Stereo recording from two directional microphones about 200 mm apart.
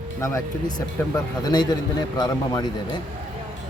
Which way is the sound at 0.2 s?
15° left (ahead or behind).